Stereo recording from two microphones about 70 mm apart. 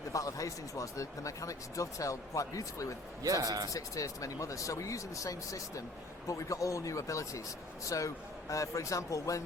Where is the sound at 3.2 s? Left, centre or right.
Right.